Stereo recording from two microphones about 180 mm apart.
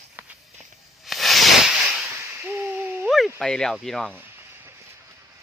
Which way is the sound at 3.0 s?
Centre (ahead or behind).